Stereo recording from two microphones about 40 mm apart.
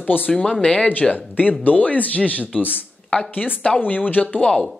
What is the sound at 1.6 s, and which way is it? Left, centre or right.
Speech, left.